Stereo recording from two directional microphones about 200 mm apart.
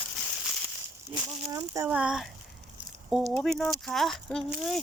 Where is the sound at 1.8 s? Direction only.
5° right (ahead or behind).